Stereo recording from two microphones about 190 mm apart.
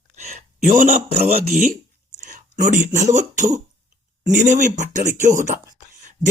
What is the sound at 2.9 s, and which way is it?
Speech, 40° right (ahead or behind).